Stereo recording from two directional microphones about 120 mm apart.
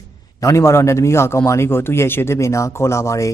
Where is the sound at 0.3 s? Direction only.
25° left (ahead or behind).